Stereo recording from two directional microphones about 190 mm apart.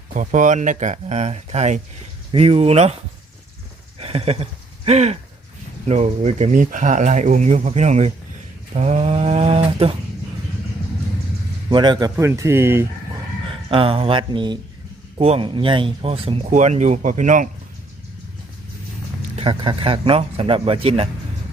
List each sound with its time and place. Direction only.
0.1 s speech: 40° right (ahead or behind)
3.9 s a sound: 30° right (ahead or behind)
4.9 s speech: 35° right (ahead or behind)
11.7 s speech: 25° right (ahead or behind)
13.7 s speech: 30° right (ahead or behind)
19.4 s speech: 25° right (ahead or behind)